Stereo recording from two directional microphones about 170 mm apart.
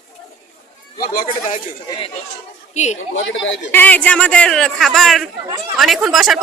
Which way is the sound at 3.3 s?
90° left.